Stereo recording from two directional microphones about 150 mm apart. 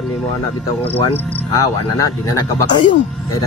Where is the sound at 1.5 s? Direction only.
25° left (ahead or behind).